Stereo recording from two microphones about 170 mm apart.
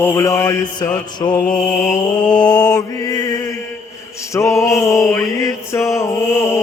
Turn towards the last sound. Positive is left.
turn(degrees=15)  # may be behind; listen again after turning